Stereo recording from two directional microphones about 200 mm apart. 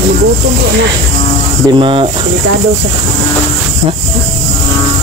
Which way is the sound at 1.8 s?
25° right (ahead or behind).